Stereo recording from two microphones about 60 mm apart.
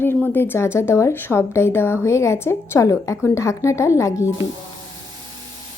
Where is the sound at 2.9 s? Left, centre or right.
Left.